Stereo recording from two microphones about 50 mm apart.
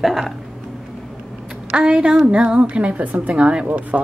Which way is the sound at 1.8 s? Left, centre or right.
Centre.